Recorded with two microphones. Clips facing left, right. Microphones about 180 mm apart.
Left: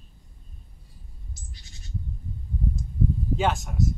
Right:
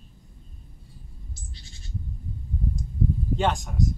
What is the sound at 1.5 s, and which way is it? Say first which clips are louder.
Owl: right 2 dB; 30° right (ahead or behind).